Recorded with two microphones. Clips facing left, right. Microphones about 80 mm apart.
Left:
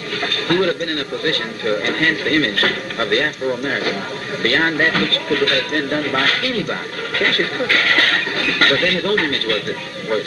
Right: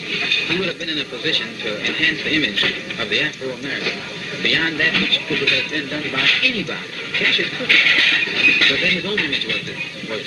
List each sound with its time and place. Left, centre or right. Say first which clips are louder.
0.1 s speech: left 5 dB; left
4.4 s speech: left 4 dB; left